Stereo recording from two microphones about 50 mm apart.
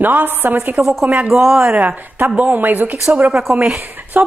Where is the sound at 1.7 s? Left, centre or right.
Right.